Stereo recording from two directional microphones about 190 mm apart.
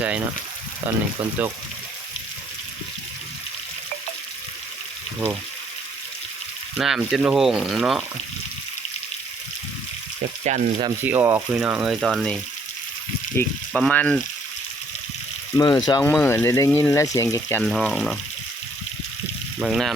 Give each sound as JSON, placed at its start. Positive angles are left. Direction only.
{"t": 0.9, "sound": "speech", "side_deg": -10}
{"t": 6.7, "sound": "speech", "side_deg": 0}
{"t": 10.4, "sound": "speech", "side_deg": -35}
{"t": 11.0, "sound": "speech", "side_deg": -10}
{"t": 15.5, "sound": "speech", "side_deg": 20}
{"t": 17.6, "sound": "speech", "side_deg": 0}
{"t": 19.5, "sound": "speech", "side_deg": -5}